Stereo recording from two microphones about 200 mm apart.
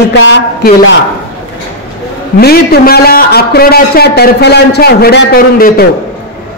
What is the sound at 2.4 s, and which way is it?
A man's voice, 50° left (ahead or behind).